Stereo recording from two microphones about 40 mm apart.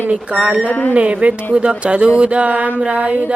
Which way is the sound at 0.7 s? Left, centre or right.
Left.